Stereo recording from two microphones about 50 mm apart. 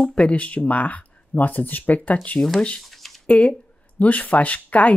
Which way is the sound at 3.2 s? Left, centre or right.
Left.